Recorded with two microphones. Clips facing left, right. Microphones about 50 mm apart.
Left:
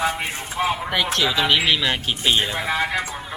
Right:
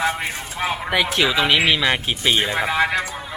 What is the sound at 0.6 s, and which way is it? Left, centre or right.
Speech, centre.